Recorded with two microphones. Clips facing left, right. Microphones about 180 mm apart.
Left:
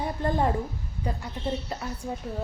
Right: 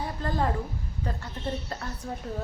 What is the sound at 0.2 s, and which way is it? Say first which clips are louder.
Speech: left 3 dB; 20° left (ahead or behind).